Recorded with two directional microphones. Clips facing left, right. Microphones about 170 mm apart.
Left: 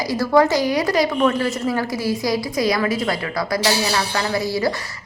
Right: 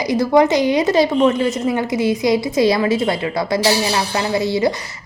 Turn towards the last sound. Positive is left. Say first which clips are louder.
# right 4 dB
turn(degrees=-20)  # may be behind; listen again after turning